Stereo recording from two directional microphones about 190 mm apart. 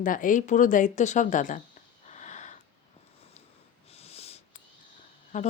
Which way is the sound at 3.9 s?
30° left (ahead or behind).